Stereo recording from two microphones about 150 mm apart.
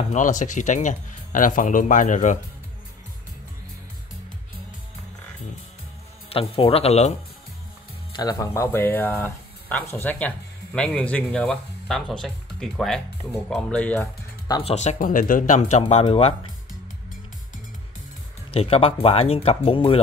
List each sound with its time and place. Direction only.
0.1 s speech: 55° left (ahead or behind)
6.2 s speech: 40° left (ahead or behind)
8.1 s speech: 25° left (ahead or behind); by 14.0 s 10° left (ahead or behind)
14.6 s speech: 45° left (ahead or behind)
15.8 s speech: 40° left (ahead or behind)
18.5 s speech: 40° left (ahead or behind)